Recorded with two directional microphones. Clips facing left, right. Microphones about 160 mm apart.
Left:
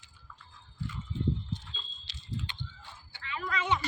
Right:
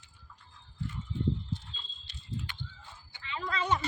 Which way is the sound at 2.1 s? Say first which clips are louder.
Even; 90° left.